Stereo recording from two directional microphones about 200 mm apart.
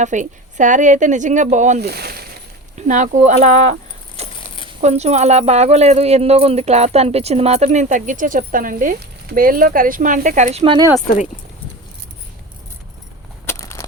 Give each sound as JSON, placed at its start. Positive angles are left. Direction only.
{"t": 0.0, "sound": "speech", "side_deg": -40}
{"t": 1.8, "sound": "speech", "side_deg": -55}
{"t": 2.7, "sound": "speech", "side_deg": -40}
{"t": 4.2, "sound": "a sound", "side_deg": -30}
{"t": 4.8, "sound": "speech", "side_deg": -35}
{"t": 13.4, "sound": "crushing", "side_deg": 15}